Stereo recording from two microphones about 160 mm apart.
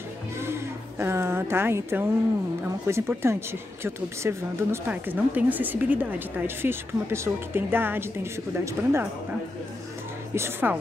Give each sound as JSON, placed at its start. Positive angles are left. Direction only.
{"t": 0.4, "sound": "a sound", "side_deg": -15}
{"t": 2.9, "sound": "speech", "side_deg": -15}
{"t": 10.3, "sound": "speech", "side_deg": -15}